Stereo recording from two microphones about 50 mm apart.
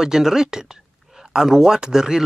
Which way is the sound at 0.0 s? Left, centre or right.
Centre.